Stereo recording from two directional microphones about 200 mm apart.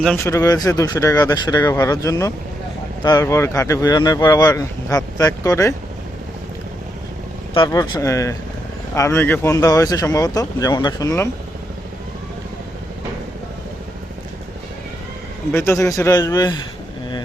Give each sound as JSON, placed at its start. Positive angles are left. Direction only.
{"t": 0.2, "sound": "speech", "side_deg": 15}
{"t": 7.5, "sound": "speech", "side_deg": 20}
{"t": 15.5, "sound": "speech", "side_deg": 15}